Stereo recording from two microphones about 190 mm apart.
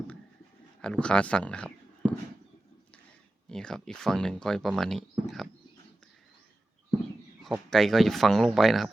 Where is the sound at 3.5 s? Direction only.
5° left (ahead or behind).